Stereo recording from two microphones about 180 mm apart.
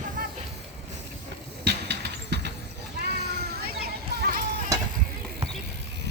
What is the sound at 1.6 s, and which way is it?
Vehicle, 65° right (ahead or behind).